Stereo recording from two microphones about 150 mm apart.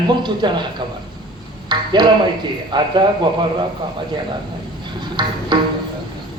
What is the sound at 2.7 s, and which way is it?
Speech, 30° right (ahead or behind).